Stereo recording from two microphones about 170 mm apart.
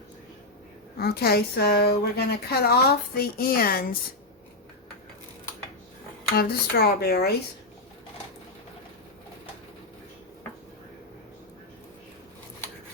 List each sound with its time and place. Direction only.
0.9 s a woman's voice: 70° left (ahead or behind)
6.3 s a woman's voice: 65° left (ahead or behind)